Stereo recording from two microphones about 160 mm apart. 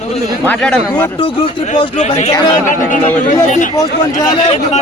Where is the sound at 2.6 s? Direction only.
50° left (ahead or behind).